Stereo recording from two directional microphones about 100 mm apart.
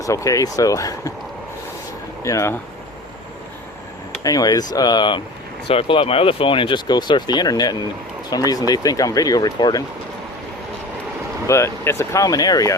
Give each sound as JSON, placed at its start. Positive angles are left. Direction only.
{"t": 0.0, "sound": "speech", "side_deg": 30}
{"t": 2.2, "sound": "speech", "side_deg": 30}
{"t": 4.2, "sound": "speech", "side_deg": 40}
{"t": 5.6, "sound": "speech", "side_deg": 65}
{"t": 11.4, "sound": "speech", "side_deg": 30}